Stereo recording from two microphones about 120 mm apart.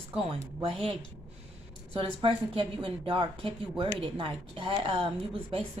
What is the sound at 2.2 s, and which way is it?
Speech, 50° right (ahead or behind).